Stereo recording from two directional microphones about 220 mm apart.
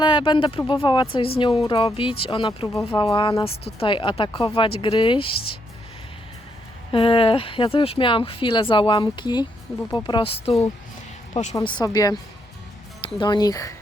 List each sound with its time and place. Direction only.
0.0 s speech: 20° left (ahead or behind)
6.9 s speech: 25° left (ahead or behind)
11.5 s speech: 20° left (ahead or behind)
13.1 s speech: 20° left (ahead or behind)